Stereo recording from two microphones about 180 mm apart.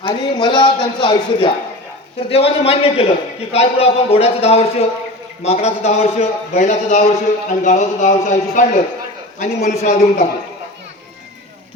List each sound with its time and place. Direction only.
0.0 s a man's voice: 25° left (ahead or behind); by 10.2 s 40° left (ahead or behind)